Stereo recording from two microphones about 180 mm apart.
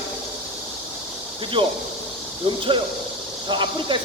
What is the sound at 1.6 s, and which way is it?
Speech, 30° right (ahead or behind).